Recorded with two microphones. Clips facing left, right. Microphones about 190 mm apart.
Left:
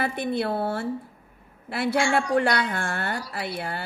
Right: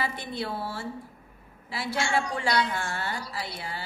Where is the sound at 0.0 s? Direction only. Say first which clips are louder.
Left 7 dB; 60° left (ahead or behind).